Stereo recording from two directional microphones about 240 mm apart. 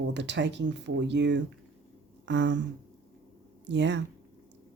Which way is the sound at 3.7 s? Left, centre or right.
Right.